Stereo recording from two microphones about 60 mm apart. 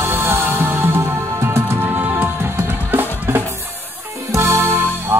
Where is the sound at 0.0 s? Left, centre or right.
Right.